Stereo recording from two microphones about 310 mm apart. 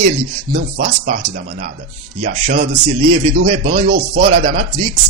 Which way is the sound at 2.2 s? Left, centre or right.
Right.